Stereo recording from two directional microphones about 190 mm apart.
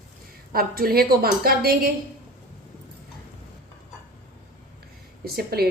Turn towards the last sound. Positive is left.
turn(degrees=-55)  # may be behind; listen again after turning